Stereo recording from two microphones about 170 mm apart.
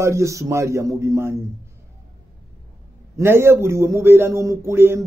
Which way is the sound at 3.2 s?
15° right (ahead or behind).